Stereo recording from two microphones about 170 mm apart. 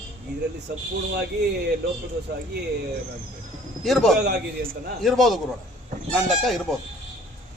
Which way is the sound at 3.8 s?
Centre (ahead or behind).